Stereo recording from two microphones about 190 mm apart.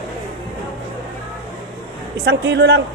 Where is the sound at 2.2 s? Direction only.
65° right (ahead or behind).